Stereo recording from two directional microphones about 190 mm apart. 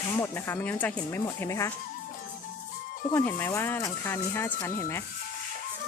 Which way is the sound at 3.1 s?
10° left (ahead or behind).